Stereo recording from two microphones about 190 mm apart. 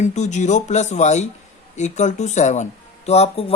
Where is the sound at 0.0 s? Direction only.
40° left (ahead or behind).